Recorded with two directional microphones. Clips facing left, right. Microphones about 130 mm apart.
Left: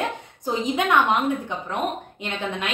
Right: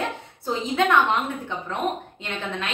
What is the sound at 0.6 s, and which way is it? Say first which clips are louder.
Speech: even; 15° left (ahead or behind).